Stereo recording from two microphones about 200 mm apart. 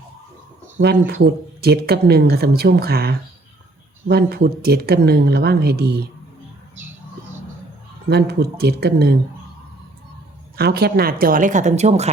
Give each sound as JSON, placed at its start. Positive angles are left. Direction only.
{"t": 0.8, "sound": "speech", "side_deg": -55}
{"t": 8.1, "sound": "speech", "side_deg": -55}
{"t": 10.6, "sound": "speech", "side_deg": -50}